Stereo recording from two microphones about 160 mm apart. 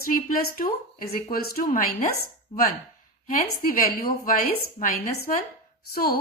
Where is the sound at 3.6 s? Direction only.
65° left (ahead or behind).